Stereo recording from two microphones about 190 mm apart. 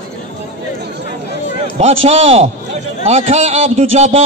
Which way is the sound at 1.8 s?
30° right (ahead or behind).